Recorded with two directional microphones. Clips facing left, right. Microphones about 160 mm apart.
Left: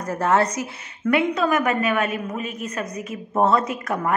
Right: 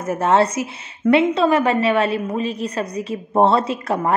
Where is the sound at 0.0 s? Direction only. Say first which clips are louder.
Right 3 dB; 25° right (ahead or behind).